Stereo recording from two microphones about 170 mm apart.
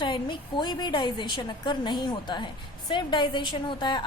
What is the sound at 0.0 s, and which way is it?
A woman's voice, 30° left (ahead or behind).